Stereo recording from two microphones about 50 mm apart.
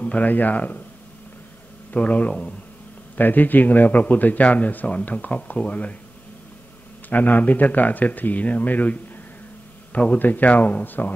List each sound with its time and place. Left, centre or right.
0.0 s speech: left
1.9 s speech: left
3.2 s speech: left
7.1 s speech: left
10.1 s speech: left